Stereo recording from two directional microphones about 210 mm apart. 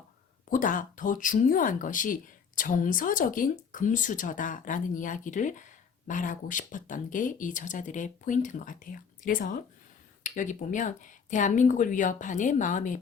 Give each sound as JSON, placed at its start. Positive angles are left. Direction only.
{"t": 0.5, "sound": "speech", "side_deg": 40}